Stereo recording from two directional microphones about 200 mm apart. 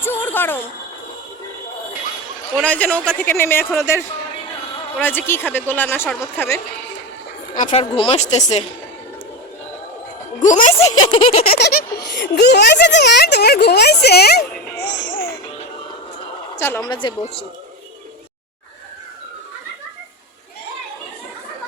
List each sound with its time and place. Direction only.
0.0 s a sound: 10° left (ahead or behind)
2.6 s a man's voice: 5° left (ahead or behind)
7.5 s a woman's voice: 35° left (ahead or behind)
10.4 s a woman's voice: 40° left (ahead or behind)
10.8 s a woman's voice: 20° left (ahead or behind)
11.5 s a child's voice: 50° left (ahead or behind)
14.8 s music: 65° left (ahead or behind)
15.1 s music: 50° left (ahead or behind)
16.6 s a woman's voice: 10° left (ahead or behind)